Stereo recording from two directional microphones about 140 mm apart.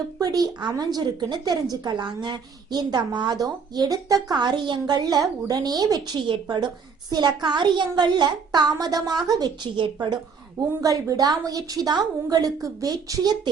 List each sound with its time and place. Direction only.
0.2 s a woman's voice: 25° right (ahead or behind)